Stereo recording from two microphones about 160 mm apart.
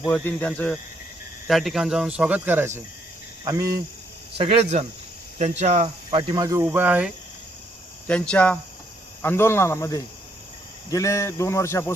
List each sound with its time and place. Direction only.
0.1 s speech: 10° left (ahead or behind); by 3.8 s 20° right (ahead or behind)
4.4 s speech: 40° right (ahead or behind)
6.1 s speech: 30° right (ahead or behind); by 7.1 s 10° right (ahead or behind)
8.0 s speech: 5° left (ahead or behind)